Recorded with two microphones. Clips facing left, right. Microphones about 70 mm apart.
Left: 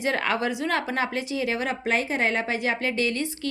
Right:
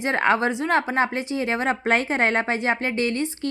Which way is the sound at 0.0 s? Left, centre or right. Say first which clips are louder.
Right 4 dB; right.